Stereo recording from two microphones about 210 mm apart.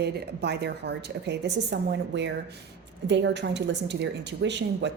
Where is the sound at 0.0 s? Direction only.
55° right (ahead or behind).